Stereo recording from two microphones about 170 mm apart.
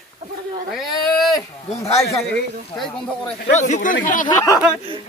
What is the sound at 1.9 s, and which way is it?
Speech, 40° left (ahead or behind).